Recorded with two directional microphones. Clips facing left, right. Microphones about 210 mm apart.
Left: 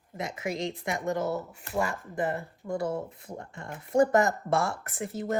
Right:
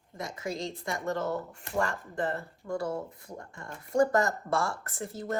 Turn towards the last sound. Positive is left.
turn(degrees=20)  # may be behind; listen again after turning